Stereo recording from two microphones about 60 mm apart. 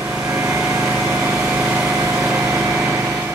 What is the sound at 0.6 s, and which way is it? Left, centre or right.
Light engine, right.